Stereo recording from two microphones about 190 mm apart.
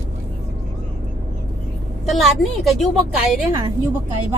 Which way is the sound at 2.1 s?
Centre (ahead or behind).